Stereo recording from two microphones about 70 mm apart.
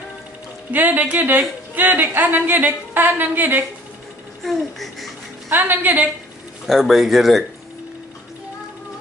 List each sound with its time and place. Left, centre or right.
0.7 s speech: right
4.4 s speech: centre
5.5 s speech: right
6.7 s speech: centre